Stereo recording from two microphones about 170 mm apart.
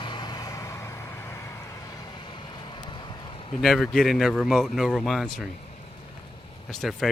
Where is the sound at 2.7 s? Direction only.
25° left (ahead or behind).